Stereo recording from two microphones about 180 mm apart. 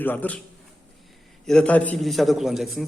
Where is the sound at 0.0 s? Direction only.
10° left (ahead or behind).